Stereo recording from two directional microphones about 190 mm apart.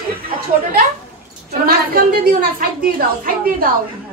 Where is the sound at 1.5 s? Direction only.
55° right (ahead or behind).